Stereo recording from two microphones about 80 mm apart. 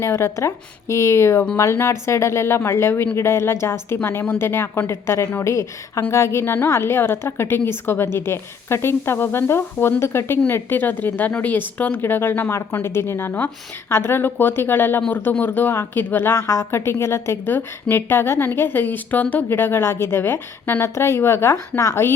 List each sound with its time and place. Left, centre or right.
0.0 s a woman's voice: left